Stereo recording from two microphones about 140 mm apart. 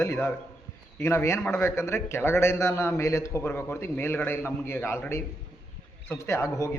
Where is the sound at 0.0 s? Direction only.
20° left (ahead or behind).